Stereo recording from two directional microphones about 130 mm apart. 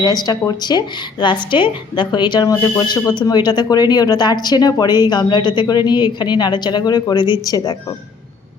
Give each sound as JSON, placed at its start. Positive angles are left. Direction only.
{"t": 0.0, "sound": "speech", "side_deg": 30}